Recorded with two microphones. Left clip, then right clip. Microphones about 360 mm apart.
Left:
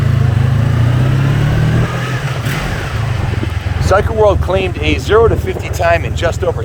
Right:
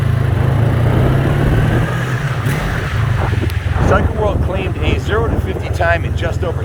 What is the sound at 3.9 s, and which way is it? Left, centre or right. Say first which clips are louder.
Speech: left 9 dB; centre.